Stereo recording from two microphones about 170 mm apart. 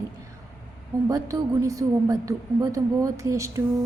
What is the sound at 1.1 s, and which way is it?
A woman's voice, 20° right (ahead or behind).